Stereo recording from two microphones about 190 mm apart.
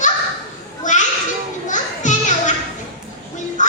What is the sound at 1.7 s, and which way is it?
Music, 40° left (ahead or behind).